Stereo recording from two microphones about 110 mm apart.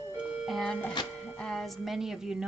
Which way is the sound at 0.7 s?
10° left (ahead or behind).